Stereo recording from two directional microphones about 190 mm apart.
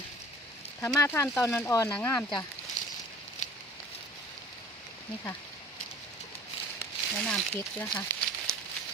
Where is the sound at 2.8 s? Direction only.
40° left (ahead or behind).